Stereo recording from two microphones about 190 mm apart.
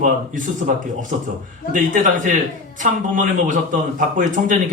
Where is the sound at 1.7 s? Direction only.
45° right (ahead or behind).